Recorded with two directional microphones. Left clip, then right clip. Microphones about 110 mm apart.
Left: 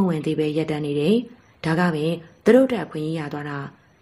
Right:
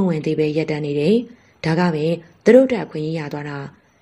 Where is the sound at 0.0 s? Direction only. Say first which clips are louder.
Right 3 dB; 20° right (ahead or behind).